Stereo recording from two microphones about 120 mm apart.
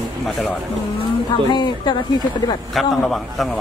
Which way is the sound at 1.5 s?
35° left (ahead or behind).